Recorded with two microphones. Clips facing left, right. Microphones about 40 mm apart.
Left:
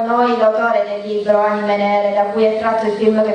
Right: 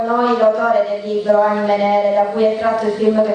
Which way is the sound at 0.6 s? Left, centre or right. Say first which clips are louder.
Even; centre.